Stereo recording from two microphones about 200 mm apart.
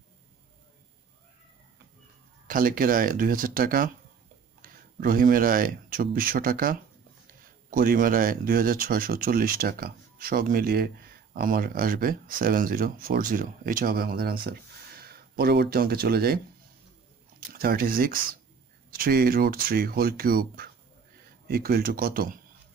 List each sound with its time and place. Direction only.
2.4 s speech: 45° right (ahead or behind)
17.5 s speech: 50° right (ahead or behind)